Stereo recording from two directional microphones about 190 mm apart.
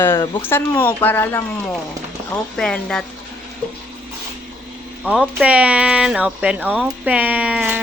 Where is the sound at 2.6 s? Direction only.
5° left (ahead or behind).